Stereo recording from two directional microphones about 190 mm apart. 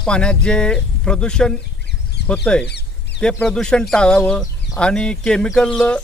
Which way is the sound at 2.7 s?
60° left (ahead or behind).